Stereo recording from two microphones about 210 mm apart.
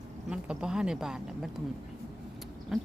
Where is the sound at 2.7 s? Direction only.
5° right (ahead or behind).